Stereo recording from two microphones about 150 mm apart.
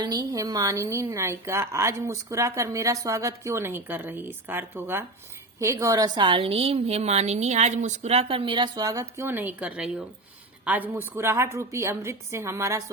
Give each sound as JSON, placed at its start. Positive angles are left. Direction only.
{"t": 0.0, "sound": "a woman's voice", "side_deg": -25}